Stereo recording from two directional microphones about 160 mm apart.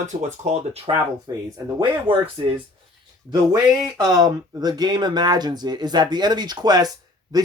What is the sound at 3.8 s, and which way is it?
Speech, 20° right (ahead or behind).